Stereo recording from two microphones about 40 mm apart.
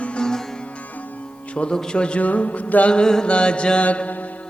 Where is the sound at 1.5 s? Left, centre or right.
Left.